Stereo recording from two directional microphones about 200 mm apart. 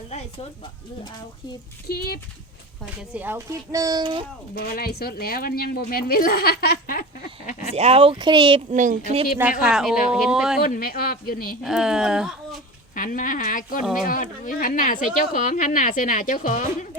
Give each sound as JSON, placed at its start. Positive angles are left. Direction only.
{"t": 1.9, "sound": "speech", "side_deg": 50}
{"t": 3.1, "sound": "speech", "side_deg": -10}
{"t": 4.5, "sound": "speech", "side_deg": 50}
{"t": 7.7, "sound": "speech", "side_deg": -30}
{"t": 8.7, "sound": "speech", "side_deg": -40}
{"t": 9.4, "sound": "speech", "side_deg": -5}
{"t": 10.6, "sound": "speech", "side_deg": 45}
{"t": 11.6, "sound": "speech", "side_deg": -5}
{"t": 13.0, "sound": "speech", "side_deg": 40}